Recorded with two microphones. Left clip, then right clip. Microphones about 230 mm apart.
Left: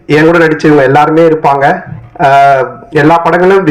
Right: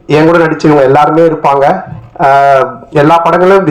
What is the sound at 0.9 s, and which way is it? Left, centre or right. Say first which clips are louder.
A man's voice: left 1 dB; left.